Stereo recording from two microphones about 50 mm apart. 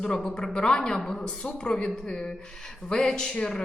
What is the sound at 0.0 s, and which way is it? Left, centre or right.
Speech, centre.